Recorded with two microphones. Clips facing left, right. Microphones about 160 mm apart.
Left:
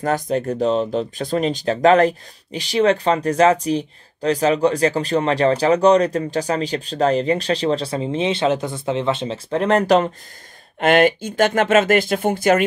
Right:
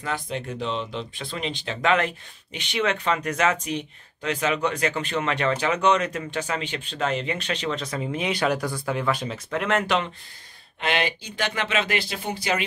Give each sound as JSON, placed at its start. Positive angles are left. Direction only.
{"t": 0.0, "sound": "speech", "side_deg": 45}